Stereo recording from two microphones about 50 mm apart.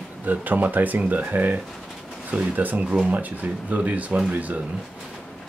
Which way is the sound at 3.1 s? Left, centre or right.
Right.